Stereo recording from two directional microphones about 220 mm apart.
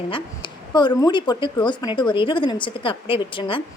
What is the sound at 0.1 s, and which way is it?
A woman's voice, 20° left (ahead or behind).